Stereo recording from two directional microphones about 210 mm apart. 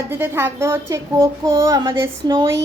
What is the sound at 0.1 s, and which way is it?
A woman's voice, 10° right (ahead or behind).